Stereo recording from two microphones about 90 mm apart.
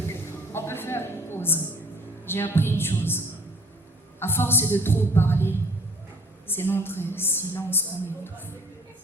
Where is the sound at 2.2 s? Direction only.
25° left (ahead or behind).